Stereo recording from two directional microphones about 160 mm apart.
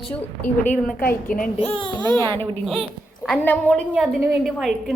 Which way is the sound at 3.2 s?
10° left (ahead or behind).